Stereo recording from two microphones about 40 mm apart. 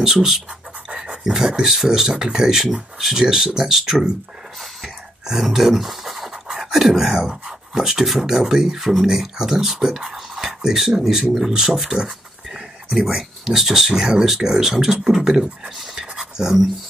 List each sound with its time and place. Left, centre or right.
0.0 s speech: centre
0.8 s pant: right
1.2 s speech: centre
5.4 s speech: centre
15.6 s a sound: centre